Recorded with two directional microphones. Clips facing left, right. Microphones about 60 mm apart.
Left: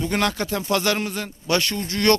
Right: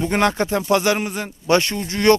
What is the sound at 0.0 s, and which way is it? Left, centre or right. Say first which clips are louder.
A man's voice: right 4 dB; right.